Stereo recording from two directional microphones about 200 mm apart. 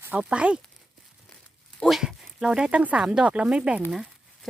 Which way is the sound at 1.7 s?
Centre (ahead or behind).